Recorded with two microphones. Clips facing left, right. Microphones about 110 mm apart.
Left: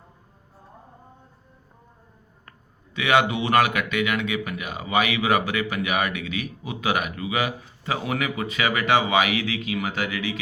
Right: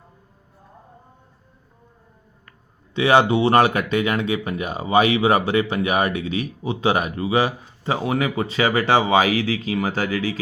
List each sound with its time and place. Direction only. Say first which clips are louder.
2.9 s speech: right 5 dB; 30° right (ahead or behind)